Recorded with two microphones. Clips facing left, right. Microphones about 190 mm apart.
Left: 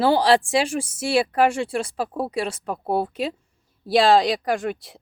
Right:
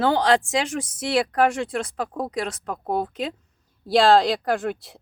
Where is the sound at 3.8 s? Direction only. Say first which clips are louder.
Even; centre (ahead or behind).